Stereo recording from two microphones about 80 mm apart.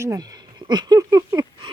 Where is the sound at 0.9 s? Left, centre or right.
Right.